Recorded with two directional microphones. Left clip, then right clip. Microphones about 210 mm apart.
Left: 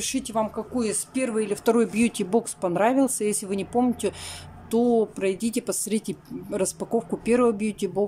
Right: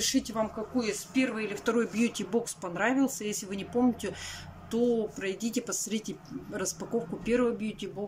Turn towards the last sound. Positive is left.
turn(degrees=25)  # may be behind; listen again after turning